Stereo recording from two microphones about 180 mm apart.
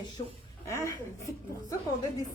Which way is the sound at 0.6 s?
15° left (ahead or behind).